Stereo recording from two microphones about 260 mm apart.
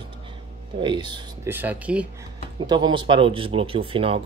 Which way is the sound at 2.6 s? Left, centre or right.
Centre.